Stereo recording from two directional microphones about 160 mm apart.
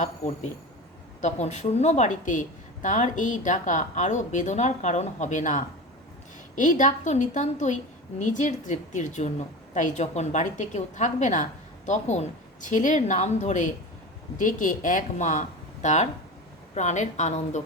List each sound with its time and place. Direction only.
1.2 s a woman's voice: 45° left (ahead or behind)